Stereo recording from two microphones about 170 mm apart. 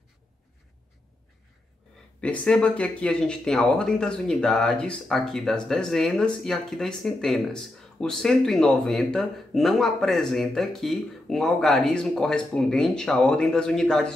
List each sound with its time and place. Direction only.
2.2 s speech: 5° left (ahead or behind)